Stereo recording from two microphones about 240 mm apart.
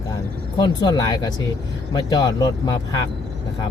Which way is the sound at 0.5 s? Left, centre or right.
Centre.